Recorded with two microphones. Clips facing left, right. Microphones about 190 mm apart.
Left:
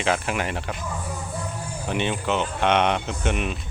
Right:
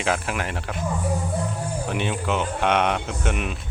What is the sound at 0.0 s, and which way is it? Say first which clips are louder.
Speech: left 1 dB; centre (ahead or behind).